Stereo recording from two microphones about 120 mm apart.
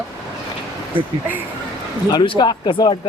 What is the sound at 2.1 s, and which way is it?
Speech, 35° left (ahead or behind).